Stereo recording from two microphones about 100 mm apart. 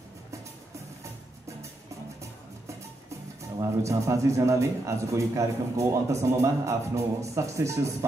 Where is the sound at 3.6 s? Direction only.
30° right (ahead or behind).